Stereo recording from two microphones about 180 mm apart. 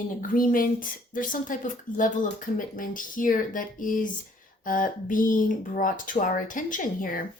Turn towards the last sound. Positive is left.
turn(degrees=50)  # may be behind; listen again after turning